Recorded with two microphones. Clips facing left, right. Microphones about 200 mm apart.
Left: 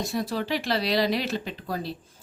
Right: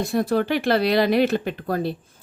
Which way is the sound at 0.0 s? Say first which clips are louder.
Right 7 dB; 55° right (ahead or behind).